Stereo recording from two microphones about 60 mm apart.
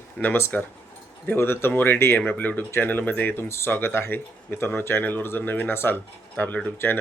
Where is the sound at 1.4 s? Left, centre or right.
Left.